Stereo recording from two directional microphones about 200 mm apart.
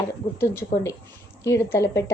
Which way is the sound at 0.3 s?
10° left (ahead or behind).